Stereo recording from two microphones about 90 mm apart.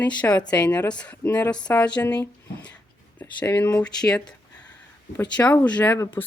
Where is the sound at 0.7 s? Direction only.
15° left (ahead or behind).